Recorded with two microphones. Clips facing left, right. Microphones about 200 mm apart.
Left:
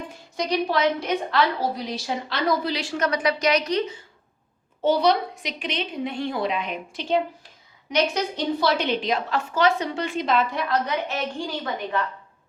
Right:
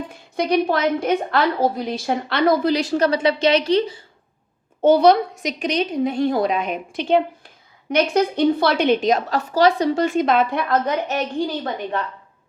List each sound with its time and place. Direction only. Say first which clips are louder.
0.3 s a woman's voice: right 4 dB; 55° right (ahead or behind); by 3.9 s 30° right (ahead or behind)
4.8 s a woman's voice: right 7 dB; 50° right (ahead or behind)